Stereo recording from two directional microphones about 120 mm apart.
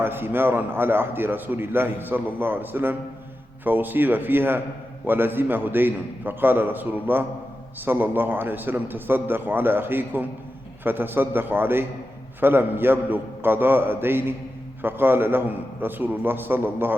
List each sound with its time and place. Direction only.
0.0 s a man's voice: 15° right (ahead or behind)